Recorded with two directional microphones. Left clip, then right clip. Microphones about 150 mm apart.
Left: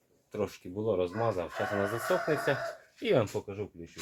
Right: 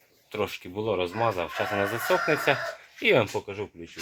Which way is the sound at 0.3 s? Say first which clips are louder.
Right 5 dB; 15° right (ahead or behind).